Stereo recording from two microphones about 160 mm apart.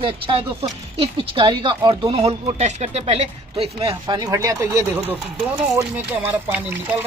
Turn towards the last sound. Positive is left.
turn(degrees=-10)  # may be behind; listen again after turning